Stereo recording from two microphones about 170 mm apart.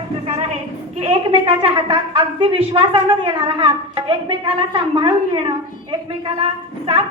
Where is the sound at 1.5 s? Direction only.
30° right (ahead or behind).